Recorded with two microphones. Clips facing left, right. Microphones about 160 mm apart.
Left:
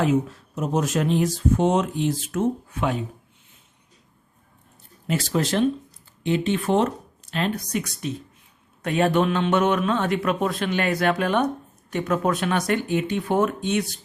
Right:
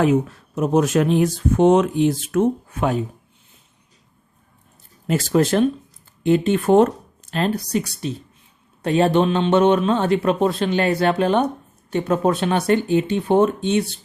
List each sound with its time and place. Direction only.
0.0 s speech: 60° right (ahead or behind)
2.7 s speech: 45° right (ahead or behind)
5.0 s a man's voice: 45° right (ahead or behind); by 14.0 s 30° right (ahead or behind)